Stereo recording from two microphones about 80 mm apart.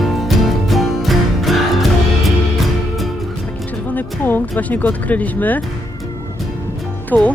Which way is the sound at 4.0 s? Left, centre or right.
Left.